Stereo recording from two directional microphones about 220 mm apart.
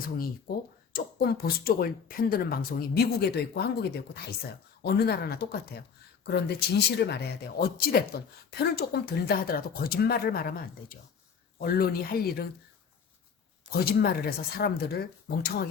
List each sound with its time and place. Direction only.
0.9 s speech: 45° left (ahead or behind)
13.8 s speech: 45° left (ahead or behind)